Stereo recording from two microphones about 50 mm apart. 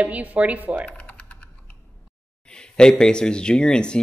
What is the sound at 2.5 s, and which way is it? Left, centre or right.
Speech, centre.